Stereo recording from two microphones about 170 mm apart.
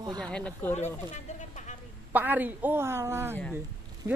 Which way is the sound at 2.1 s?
10° right (ahead or behind).